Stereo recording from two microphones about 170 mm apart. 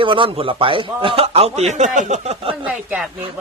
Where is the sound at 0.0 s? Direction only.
30° right (ahead or behind).